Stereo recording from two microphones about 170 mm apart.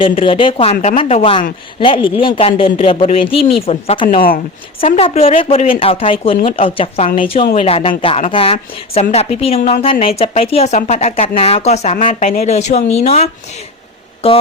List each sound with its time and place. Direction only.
0.0 s speech: 30° left (ahead or behind)